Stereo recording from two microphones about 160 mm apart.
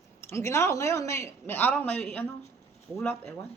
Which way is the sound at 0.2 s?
15° left (ahead or behind).